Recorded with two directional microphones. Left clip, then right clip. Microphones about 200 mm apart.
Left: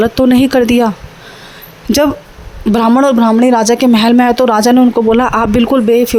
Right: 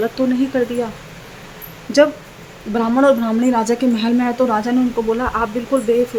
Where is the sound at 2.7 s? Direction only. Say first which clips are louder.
Left 5 dB; 45° left (ahead or behind).